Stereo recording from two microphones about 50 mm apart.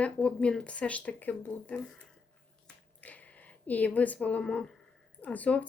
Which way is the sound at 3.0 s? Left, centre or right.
Left.